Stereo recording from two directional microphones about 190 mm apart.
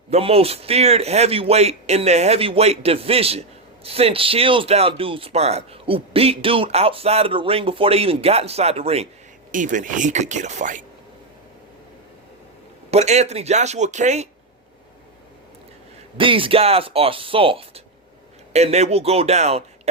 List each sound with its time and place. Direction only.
0.1 s speech: 30° right (ahead or behind)
12.9 s speech: 35° right (ahead or behind)
16.1 s speech: 25° right (ahead or behind)